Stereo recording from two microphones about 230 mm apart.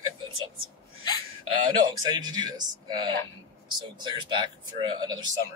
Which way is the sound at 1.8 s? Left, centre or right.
Centre.